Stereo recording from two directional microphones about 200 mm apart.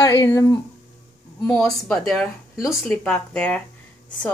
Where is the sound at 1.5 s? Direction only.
5° left (ahead or behind).